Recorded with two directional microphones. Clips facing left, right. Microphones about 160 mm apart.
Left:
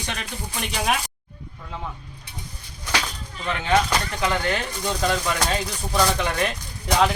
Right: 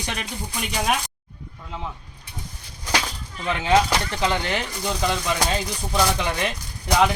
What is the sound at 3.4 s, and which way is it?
Speech, 15° right (ahead or behind).